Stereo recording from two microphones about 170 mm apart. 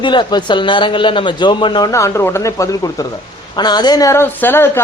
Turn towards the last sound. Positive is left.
turn(degrees=10)  # may be behind; listen again after turning